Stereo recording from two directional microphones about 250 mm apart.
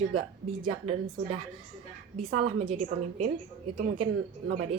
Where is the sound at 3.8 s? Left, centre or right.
Right.